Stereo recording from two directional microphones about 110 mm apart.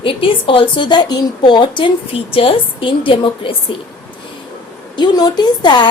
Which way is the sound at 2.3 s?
55° left (ahead or behind).